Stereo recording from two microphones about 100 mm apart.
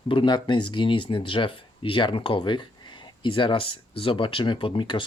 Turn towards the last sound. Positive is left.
turn(degrees=55)  # may be behind; listen again after turning